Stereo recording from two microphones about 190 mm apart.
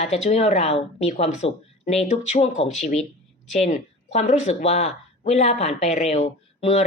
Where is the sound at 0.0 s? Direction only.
35° left (ahead or behind).